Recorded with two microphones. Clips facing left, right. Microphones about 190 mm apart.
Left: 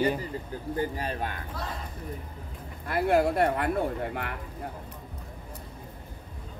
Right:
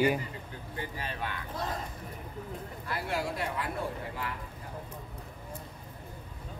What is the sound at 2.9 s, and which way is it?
Speech, 55° left (ahead or behind).